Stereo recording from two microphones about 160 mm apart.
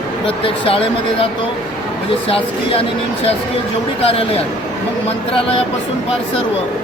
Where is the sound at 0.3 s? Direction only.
35° left (ahead or behind).